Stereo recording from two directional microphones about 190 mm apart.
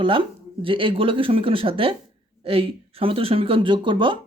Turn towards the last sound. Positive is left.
turn(degrees=-25)  # may be behind; listen again after turning